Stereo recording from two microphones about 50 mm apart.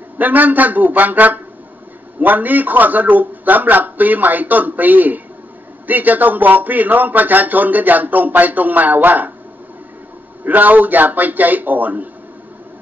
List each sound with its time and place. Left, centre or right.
0.2 s speech: right
10.4 s speech: right